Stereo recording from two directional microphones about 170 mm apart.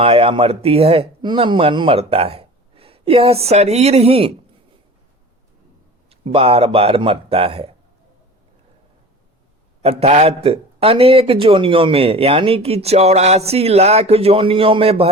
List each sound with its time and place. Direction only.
0.0 s a man's voice: 35° right (ahead or behind)
6.1 s a man's voice: 35° right (ahead or behind)
9.8 s a man's voice: 40° right (ahead or behind)